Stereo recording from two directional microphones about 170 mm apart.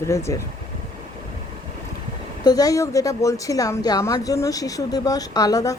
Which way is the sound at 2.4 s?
20° left (ahead or behind).